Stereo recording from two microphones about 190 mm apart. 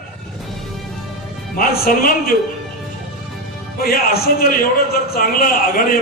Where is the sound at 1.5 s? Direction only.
50° left (ahead or behind).